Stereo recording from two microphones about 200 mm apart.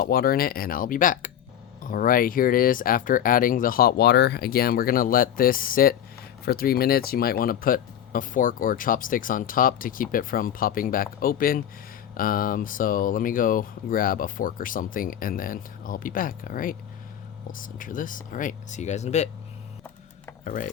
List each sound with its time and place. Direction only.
0.0 s speech: 50° left (ahead or behind)
20.4 s speech: 40° left (ahead or behind)